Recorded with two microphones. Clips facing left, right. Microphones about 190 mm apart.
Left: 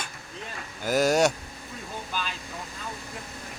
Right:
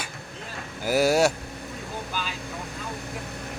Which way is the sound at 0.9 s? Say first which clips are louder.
Right 1 dB; 10° right (ahead or behind).